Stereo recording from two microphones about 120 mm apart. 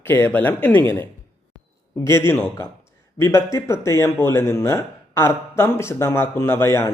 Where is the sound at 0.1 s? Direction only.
15° left (ahead or behind).